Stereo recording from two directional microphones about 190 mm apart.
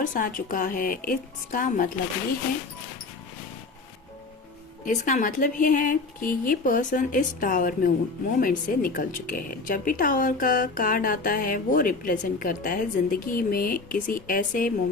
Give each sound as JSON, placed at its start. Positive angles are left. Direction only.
{"t": 0.0, "sound": "a woman's voice", "side_deg": 45}
{"t": 4.9, "sound": "a woman's voice", "side_deg": 45}